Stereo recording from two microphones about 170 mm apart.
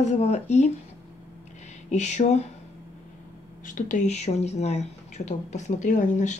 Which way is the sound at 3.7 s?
50° left (ahead or behind).